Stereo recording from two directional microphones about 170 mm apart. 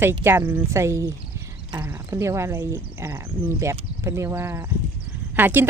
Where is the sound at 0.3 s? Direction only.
10° right (ahead or behind).